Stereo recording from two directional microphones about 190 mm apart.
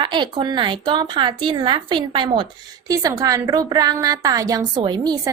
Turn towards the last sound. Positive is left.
turn(degrees=-20)  # may be behind; listen again after turning